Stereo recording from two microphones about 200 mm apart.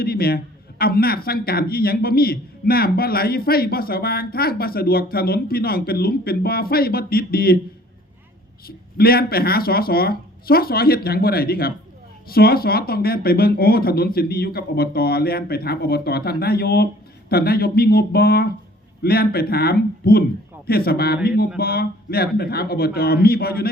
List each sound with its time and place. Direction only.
0.0 s a man's voice: 50° left (ahead or behind)
8.6 s a man's voice: 50° left (ahead or behind)